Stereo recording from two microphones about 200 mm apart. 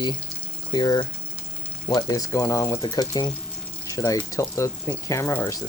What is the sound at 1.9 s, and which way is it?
Speech, 20° left (ahead or behind).